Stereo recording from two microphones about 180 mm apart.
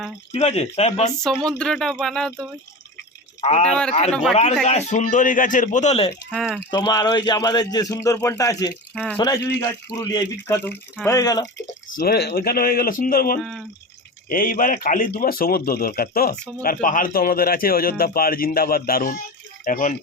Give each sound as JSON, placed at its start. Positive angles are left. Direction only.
{"t": 0.3, "sound": "speech", "side_deg": 35}
{"t": 1.5, "sound": "speech", "side_deg": 5}
{"t": 3.4, "sound": "speech", "side_deg": 35}
{"t": 3.7, "sound": "speech", "side_deg": 5}
{"t": 4.6, "sound": "speech", "side_deg": 40}
{"t": 6.3, "sound": "speech", "side_deg": 0}
{"t": 6.7, "sound": "speech", "side_deg": 20}
{"t": 11.9, "sound": "speech", "side_deg": 60}
{"t": 13.4, "sound": "speech", "side_deg": 0}
{"t": 14.3, "sound": "speech", "side_deg": 50}
{"t": 19.6, "sound": "speech", "side_deg": 45}